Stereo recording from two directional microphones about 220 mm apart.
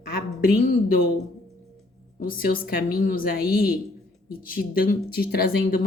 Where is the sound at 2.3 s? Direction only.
40° left (ahead or behind).